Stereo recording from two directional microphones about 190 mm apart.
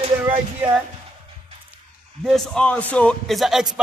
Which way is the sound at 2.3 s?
Centre (ahead or behind).